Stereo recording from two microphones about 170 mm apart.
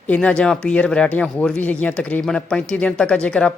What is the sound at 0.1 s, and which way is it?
Speech, 5° left (ahead or behind).